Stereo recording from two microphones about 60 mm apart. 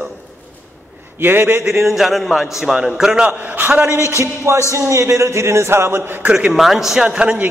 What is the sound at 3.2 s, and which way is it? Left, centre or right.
Speech, right.